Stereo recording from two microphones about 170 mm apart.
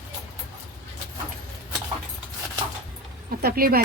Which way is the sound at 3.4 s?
60° right (ahead or behind).